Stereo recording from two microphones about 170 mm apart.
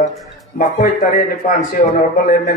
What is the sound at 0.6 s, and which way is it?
A man's voice, 55° left (ahead or behind).